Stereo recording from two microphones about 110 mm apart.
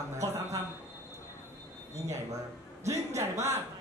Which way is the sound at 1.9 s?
30° right (ahead or behind).